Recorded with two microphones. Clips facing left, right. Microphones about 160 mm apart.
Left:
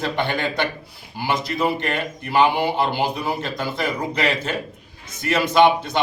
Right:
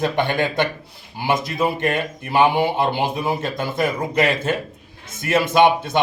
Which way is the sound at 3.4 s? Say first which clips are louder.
Right 3 dB; 50° right (ahead or behind).